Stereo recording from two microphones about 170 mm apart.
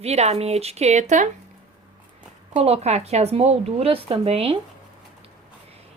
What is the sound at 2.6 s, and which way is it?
Speech, 40° right (ahead or behind).